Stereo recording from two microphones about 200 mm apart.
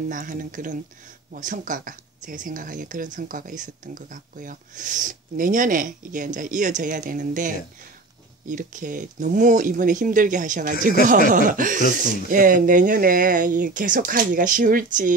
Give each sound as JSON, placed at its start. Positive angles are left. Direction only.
{"t": 0.1, "sound": "speech", "side_deg": -40}